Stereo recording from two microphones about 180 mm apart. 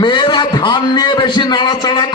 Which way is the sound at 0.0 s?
25° left (ahead or behind).